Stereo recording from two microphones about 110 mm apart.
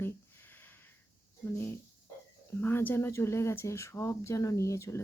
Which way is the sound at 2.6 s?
20° left (ahead or behind).